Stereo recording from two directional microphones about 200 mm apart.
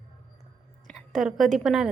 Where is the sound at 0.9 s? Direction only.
Centre (ahead or behind).